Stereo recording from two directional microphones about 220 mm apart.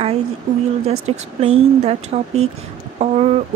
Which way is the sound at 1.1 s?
30° right (ahead or behind).